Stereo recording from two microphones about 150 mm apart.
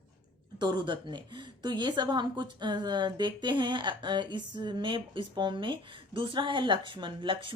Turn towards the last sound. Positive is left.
turn(degrees=-35)  # may be behind; listen again after turning